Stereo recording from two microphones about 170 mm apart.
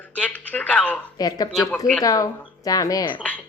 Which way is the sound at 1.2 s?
20° left (ahead or behind).